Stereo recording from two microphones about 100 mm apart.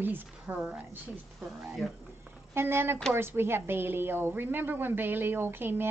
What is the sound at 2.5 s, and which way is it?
A woman's voice, 25° right (ahead or behind).